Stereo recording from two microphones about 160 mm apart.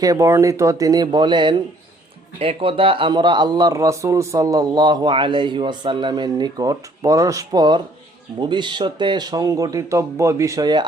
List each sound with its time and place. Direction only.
0.0 s speech: 20° right (ahead or behind)